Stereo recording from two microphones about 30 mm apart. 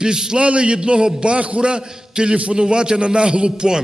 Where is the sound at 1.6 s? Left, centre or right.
Right.